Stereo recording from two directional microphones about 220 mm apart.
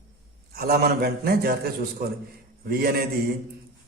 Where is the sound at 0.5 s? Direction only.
45° right (ahead or behind).